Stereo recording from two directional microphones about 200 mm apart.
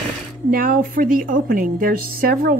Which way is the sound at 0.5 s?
45° right (ahead or behind).